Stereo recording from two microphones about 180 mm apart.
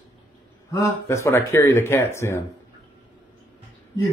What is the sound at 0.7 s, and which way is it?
A man's voice, 15° left (ahead or behind).